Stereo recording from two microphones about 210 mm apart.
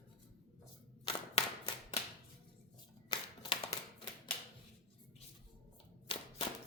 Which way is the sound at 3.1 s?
20° left (ahead or behind).